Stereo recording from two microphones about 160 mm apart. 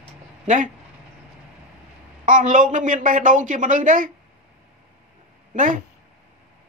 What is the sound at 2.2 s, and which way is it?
A woman's voice, 55° right (ahead or behind).